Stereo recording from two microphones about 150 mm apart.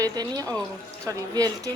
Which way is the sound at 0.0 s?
25° right (ahead or behind).